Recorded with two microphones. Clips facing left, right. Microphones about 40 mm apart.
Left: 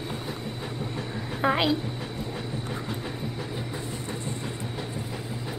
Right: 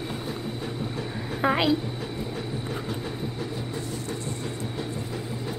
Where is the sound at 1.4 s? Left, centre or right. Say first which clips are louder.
Right 1 dB; centre.